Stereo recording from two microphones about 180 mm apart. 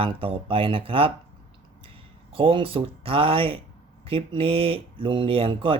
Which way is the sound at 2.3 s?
30° right (ahead or behind).